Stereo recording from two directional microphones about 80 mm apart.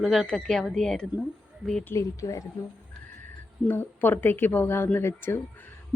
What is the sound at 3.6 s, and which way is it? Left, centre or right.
A woman's voice, left.